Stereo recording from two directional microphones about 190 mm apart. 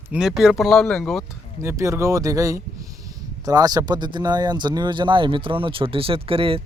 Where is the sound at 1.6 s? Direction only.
15° right (ahead or behind).